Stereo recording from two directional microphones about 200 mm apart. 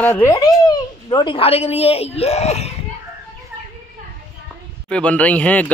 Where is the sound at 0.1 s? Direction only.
15° left (ahead or behind); by 2.8 s 35° left (ahead or behind).